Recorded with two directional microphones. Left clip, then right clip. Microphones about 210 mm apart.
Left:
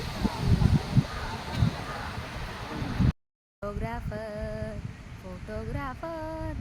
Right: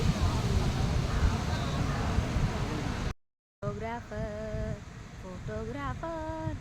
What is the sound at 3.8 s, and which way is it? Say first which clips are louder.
Speech: left 1 dB; centre (ahead or behind).